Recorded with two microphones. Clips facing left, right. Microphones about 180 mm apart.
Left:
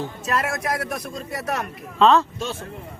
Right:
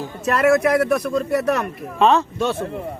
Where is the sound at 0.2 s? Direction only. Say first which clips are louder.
Right 12 dB; 65° right (ahead or behind).